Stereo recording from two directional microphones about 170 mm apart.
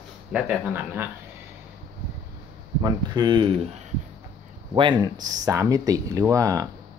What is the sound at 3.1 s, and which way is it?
Speech, 25° right (ahead or behind).